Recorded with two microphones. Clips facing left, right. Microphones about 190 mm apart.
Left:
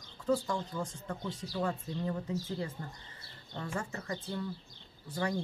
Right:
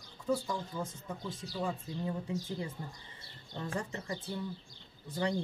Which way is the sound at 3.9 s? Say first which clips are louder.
Left 1 dB; 15° right (ahead or behind).